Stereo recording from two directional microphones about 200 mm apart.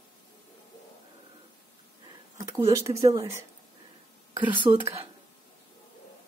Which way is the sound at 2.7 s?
15° right (ahead or behind).